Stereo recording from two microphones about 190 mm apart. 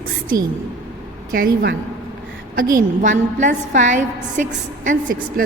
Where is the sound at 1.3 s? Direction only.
50° right (ahead or behind).